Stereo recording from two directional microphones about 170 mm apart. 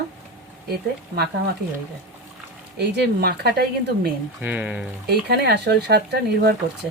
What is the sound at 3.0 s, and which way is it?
Speech, 70° right (ahead or behind).